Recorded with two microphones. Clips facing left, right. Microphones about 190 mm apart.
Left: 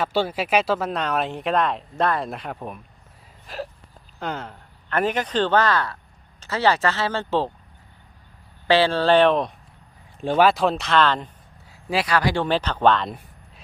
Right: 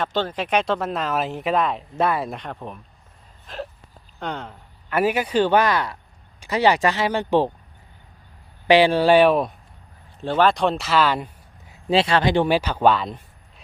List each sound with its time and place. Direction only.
0.0 s speech: 10° left (ahead or behind); by 2.4 s 5° right (ahead or behind)
2.4 s speech: 10° left (ahead or behind)
3.4 s a sound: 5° left (ahead or behind)
4.2 s speech: centre (ahead or behind); by 7.5 s 15° right (ahead or behind)
8.6 s speech: 15° right (ahead or behind)
10.2 s speech: 15° left (ahead or behind); by 11.3 s 10° right (ahead or behind)
11.7 s speech: 25° right (ahead or behind); by 13.1 s 10° right (ahead or behind)